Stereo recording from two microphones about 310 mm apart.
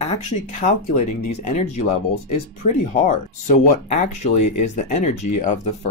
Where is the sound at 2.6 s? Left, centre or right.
Left.